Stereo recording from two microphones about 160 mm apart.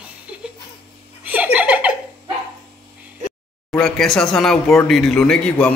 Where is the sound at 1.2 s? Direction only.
10° right (ahead or behind).